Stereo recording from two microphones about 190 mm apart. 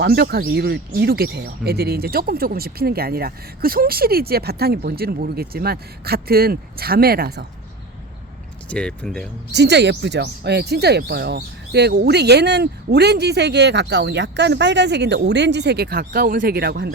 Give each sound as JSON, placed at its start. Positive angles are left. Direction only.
{"t": 0.0, "sound": "speech", "side_deg": -55}
{"t": 8.7, "sound": "speech", "side_deg": 5}
{"t": 9.5, "sound": "speech", "side_deg": -65}